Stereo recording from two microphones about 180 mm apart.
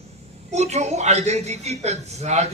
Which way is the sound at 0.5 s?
40° right (ahead or behind).